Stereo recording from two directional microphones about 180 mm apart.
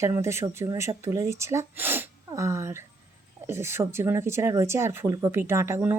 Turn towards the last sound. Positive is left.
turn(degrees=-10)  # may be behind; listen again after turning